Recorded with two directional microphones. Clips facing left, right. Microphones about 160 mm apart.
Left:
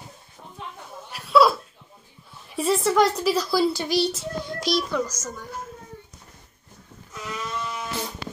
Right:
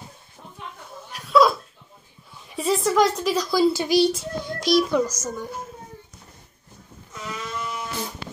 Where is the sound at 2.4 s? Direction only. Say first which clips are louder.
Even; centre (ahead or behind).